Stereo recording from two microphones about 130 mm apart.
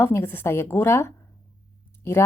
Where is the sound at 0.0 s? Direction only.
20° left (ahead or behind).